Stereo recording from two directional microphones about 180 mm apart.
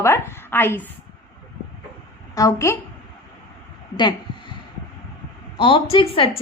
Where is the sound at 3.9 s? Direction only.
25° left (ahead or behind).